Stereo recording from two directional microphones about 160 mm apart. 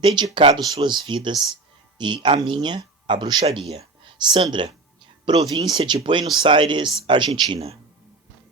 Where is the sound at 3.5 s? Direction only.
40° right (ahead or behind).